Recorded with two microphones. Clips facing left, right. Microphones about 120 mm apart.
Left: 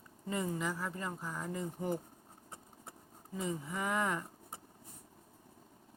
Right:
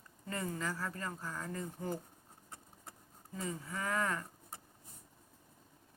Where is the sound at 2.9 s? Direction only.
20° left (ahead or behind).